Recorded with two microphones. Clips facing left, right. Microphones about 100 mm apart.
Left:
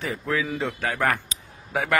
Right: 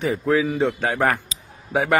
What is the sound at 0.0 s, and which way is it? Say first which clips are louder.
A man's voice: right 7 dB; 25° right (ahead or behind).